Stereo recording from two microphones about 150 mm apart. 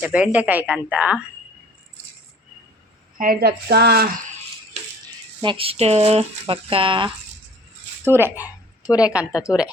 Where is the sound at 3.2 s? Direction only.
80° right.